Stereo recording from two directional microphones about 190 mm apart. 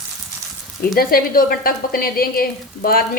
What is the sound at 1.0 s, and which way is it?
Speech, 50° left (ahead or behind).